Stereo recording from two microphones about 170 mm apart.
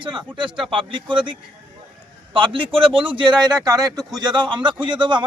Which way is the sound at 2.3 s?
30° right (ahead or behind).